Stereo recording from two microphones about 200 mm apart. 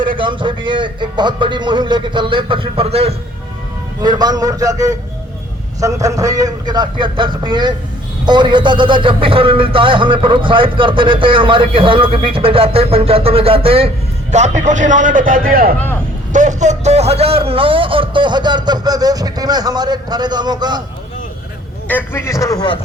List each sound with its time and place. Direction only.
0.0 s a man's voice: 25° right (ahead or behind)
4.0 s a man's voice: 20° right (ahead or behind)
21.8 s a man's voice: 10° left (ahead or behind)